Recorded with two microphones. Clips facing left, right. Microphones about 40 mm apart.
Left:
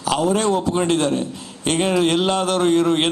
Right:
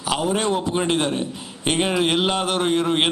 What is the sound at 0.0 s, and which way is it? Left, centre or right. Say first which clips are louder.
A man's voice: left 3 dB; centre.